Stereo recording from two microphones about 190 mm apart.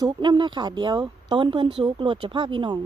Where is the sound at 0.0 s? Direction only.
25° right (ahead or behind).